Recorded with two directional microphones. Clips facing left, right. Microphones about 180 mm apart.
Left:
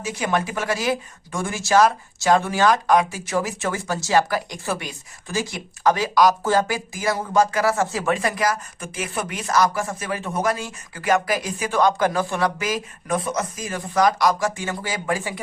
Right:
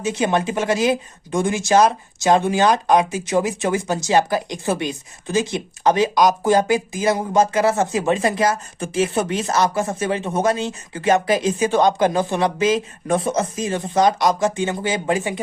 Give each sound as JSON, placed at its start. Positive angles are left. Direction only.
{"t": 0.0, "sound": "speech", "side_deg": -25}